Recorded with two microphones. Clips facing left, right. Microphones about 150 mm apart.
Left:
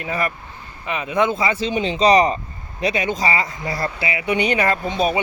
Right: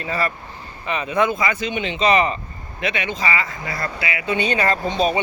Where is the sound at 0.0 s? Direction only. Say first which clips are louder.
Even; 15° left (ahead or behind).